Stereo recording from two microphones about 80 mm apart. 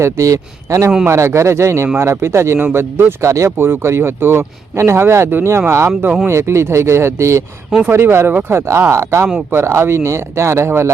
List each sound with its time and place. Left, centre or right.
0.0 s speech: right
8.3 s speech: right
8.5 s speech: right